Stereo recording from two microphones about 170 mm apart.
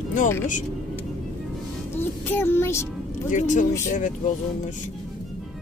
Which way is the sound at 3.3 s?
45° left (ahead or behind).